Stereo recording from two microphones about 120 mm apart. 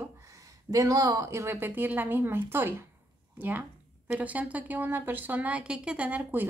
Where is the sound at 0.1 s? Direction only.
25° right (ahead or behind).